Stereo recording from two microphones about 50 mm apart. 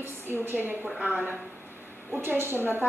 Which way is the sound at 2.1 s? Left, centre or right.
Right.